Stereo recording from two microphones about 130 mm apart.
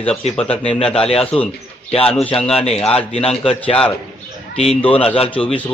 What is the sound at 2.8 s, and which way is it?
Speech, 50° left (ahead or behind).